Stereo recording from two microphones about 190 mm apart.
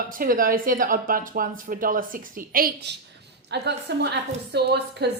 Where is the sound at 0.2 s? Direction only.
45° right (ahead or behind).